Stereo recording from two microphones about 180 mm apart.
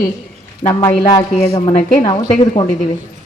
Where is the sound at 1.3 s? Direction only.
35° left (ahead or behind).